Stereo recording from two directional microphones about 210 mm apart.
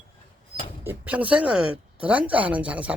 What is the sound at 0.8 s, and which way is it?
Speech, 10° right (ahead or behind).